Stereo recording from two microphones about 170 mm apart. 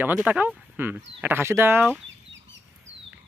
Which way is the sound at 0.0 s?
10° right (ahead or behind).